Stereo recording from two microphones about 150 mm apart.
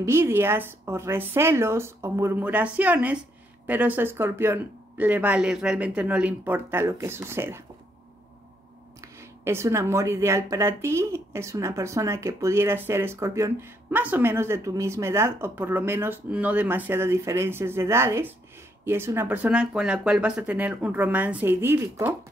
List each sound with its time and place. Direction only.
0.0 s speech: 15° right (ahead or behind)
9.4 s speech: 15° right (ahead or behind)